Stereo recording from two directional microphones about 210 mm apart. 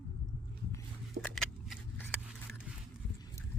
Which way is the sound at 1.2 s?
5° left (ahead or behind).